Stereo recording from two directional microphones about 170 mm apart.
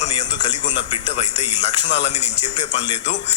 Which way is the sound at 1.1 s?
40° left (ahead or behind).